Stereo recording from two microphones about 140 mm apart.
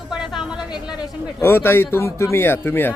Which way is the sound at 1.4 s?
15° left (ahead or behind).